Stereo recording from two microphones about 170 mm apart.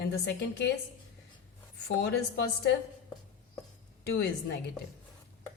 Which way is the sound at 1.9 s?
75° left (ahead or behind).